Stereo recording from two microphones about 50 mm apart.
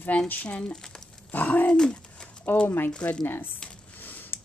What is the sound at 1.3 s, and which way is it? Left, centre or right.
Speech, left.